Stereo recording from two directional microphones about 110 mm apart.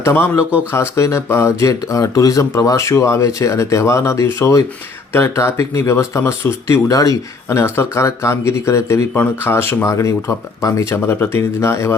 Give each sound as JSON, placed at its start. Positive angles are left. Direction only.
{"t": 0.0, "sound": "speech", "side_deg": 20}